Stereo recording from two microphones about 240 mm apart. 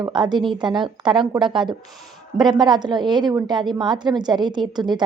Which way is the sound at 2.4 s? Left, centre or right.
Centre.